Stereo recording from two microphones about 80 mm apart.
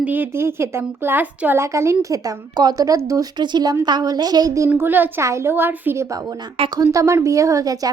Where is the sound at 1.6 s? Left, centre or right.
Right.